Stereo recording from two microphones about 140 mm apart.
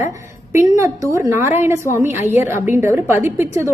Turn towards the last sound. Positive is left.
turn(degrees=-20)  # may be behind; listen again after turning